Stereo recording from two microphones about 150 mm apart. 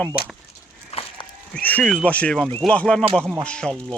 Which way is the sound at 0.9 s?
40° left (ahead or behind).